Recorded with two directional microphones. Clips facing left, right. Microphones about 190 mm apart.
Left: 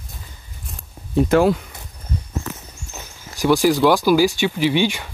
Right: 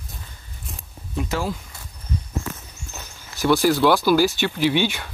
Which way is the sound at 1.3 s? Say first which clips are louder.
Left 12 dB; 65° left (ahead or behind).